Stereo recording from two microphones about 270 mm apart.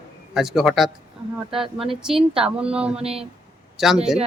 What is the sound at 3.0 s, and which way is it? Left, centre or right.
Speech, right.